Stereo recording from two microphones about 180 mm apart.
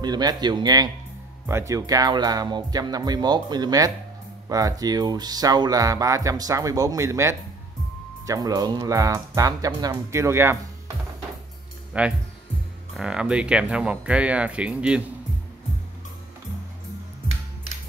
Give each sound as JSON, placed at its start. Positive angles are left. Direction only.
{"t": 0.0, "sound": "speech", "side_deg": -20}
{"t": 11.9, "sound": "speech", "side_deg": -5}